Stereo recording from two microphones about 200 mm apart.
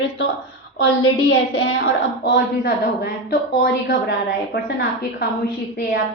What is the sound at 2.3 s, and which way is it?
A woman's voice, 50° left (ahead or behind).